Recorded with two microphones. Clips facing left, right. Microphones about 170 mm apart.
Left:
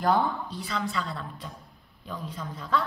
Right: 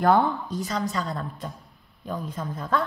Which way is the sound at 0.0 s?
50° right (ahead or behind).